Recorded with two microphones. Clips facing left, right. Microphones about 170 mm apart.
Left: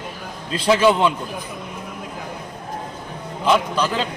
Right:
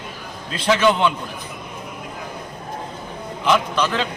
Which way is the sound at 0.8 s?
5° left (ahead or behind).